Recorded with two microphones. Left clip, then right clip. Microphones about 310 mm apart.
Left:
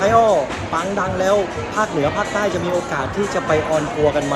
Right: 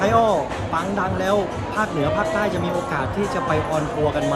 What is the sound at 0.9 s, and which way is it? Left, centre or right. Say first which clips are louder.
Speech: left 4 dB; centre.